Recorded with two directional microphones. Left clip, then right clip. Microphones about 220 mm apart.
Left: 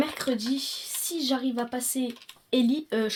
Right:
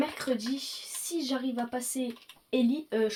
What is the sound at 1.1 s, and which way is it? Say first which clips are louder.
Speech: left 4 dB; 45° left (ahead or behind).